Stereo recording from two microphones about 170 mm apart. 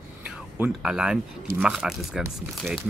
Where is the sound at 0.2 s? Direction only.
5° right (ahead or behind).